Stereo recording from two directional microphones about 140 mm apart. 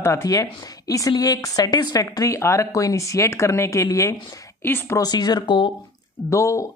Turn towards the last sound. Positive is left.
turn(degrees=20)  # may be behind; listen again after turning